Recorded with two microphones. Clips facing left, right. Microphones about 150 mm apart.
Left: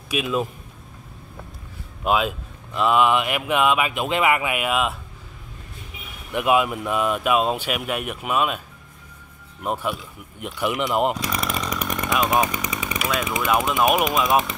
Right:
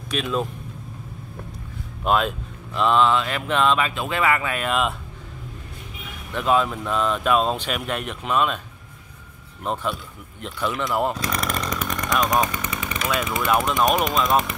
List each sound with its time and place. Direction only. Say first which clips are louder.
0.1 s speech: left 1 dB; 5° left (ahead or behind)
2.0 s speech: even; 5° left (ahead or behind)
6.3 s speech: left 1 dB; 10° left (ahead or behind)
9.6 s speech: left 1 dB; 10° left (ahead or behind)
11.2 s chainsaw: even; 5° left (ahead or behind)
12.1 s a sound: even; 5° left (ahead or behind)
12.6 s jackhammer: left 1 dB; 15° left (ahead or behind)
13.3 s speech: even; 5° left (ahead or behind)